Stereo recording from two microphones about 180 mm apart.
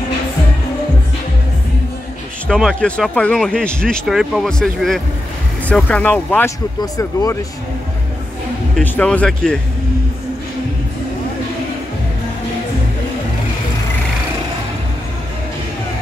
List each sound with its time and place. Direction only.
2.4 s speech: 5° left (ahead or behind)
5.7 s speech: 10° left (ahead or behind)
8.7 s speech: 10° left (ahead or behind)